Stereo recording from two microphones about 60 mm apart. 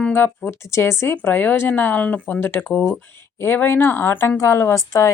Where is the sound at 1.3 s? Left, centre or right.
Left.